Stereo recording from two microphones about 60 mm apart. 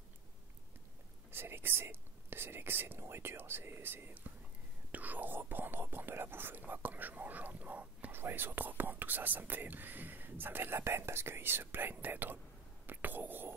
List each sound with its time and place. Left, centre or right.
1.3 s speech: right
8.1 s speech: right
12.8 s whispering: right